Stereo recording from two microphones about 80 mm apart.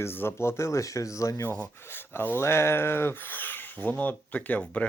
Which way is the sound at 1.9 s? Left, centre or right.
Left.